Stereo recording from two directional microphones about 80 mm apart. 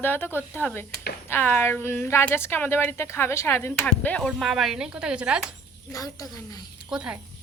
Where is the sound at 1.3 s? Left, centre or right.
Left.